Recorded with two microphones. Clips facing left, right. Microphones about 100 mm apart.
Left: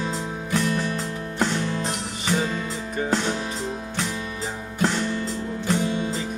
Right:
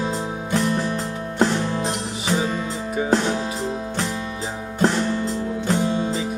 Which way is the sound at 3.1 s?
45° right (ahead or behind).